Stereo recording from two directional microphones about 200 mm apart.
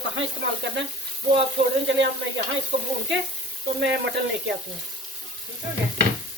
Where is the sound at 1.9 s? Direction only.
65° right (ahead or behind).